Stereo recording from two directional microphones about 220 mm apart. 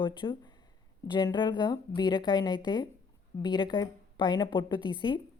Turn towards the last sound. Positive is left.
turn(degrees=20)  # may be behind; listen again after turning